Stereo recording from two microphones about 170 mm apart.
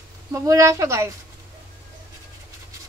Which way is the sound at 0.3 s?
20° right (ahead or behind).